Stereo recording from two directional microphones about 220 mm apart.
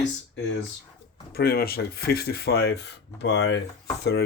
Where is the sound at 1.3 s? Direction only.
45° left (ahead or behind).